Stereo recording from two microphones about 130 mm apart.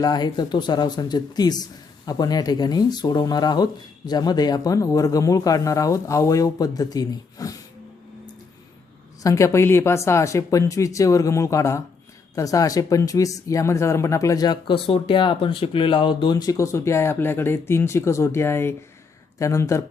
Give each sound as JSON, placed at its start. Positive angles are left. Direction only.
{"t": 0.0, "sound": "speech", "side_deg": 30}
{"t": 9.2, "sound": "speech", "side_deg": 25}